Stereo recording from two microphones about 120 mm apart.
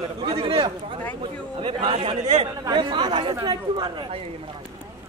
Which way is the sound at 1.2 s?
50° right (ahead or behind).